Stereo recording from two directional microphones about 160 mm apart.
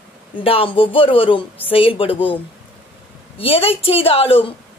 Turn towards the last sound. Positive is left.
turn(degrees=35)  # may be behind; listen again after turning